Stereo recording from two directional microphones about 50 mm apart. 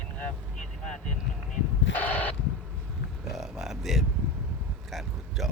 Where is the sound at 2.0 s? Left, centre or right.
Left.